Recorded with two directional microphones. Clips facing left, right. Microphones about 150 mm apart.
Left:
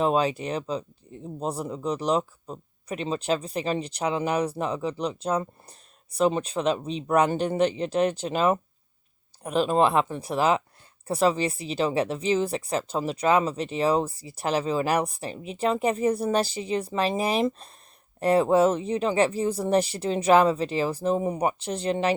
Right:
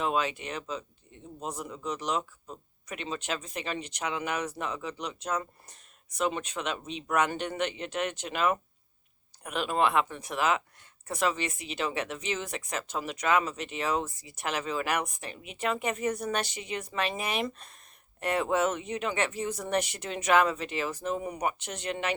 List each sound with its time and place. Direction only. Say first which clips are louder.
0.0 s speech: left 6 dB; 35° left (ahead or behind)